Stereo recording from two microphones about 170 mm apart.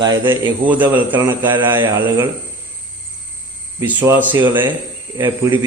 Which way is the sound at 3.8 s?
10° right (ahead or behind).